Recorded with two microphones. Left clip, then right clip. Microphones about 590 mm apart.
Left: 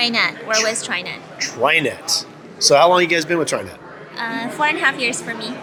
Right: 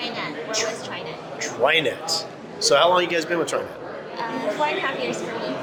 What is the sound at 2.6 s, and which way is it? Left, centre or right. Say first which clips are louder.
Speech: left 5 dB; left.